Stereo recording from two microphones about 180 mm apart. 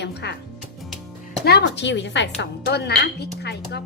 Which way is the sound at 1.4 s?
70° left (ahead or behind).